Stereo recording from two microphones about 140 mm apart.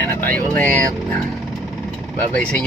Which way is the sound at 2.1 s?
10° left (ahead or behind).